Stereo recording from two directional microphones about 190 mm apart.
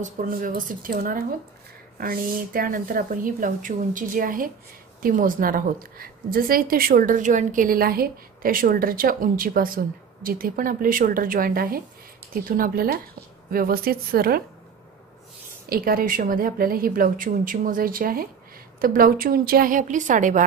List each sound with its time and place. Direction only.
0.0 s a woman's voice: 45° right (ahead or behind)
15.7 s a woman's voice: 50° right (ahead or behind)